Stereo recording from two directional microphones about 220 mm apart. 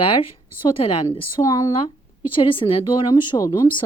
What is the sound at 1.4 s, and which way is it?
Speech, 15° left (ahead or behind).